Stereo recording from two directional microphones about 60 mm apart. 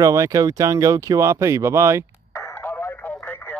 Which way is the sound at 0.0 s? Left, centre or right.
Right.